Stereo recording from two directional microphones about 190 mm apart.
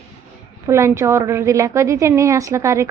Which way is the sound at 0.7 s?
15° right (ahead or behind).